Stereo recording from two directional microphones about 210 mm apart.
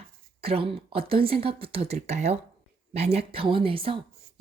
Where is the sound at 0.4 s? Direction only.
25° right (ahead or behind).